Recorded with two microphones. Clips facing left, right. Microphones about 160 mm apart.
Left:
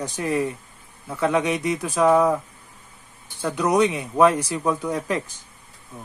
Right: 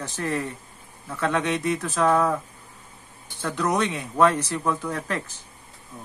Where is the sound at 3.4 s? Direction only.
15° left (ahead or behind).